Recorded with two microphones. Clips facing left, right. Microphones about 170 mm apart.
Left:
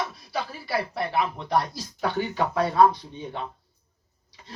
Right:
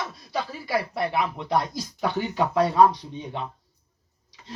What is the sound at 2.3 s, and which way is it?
Speech, 15° right (ahead or behind).